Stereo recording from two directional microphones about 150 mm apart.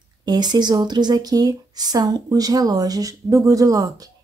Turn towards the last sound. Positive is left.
turn(degrees=-25)  # may be behind; listen again after turning